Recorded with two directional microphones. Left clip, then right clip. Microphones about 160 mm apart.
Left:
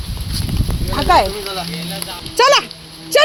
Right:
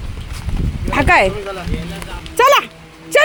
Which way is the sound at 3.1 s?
15° right (ahead or behind).